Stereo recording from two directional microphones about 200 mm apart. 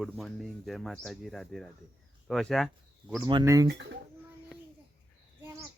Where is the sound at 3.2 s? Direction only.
20° right (ahead or behind).